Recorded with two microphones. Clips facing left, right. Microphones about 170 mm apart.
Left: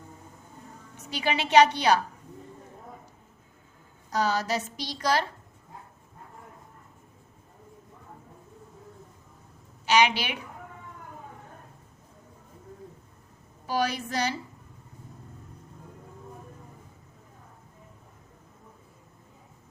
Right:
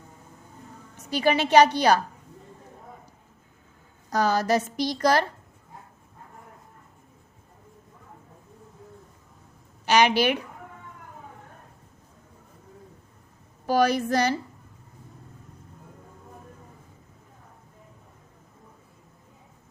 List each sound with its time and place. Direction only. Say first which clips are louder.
1.1 s a woman's voice: right 3 dB; 45° right (ahead or behind)
4.1 s a woman's voice: right 4 dB; 45° right (ahead or behind)
9.8 s a woman's voice: right 3 dB; 50° right (ahead or behind)
13.7 s a woman's voice: right 7 dB; 45° right (ahead or behind)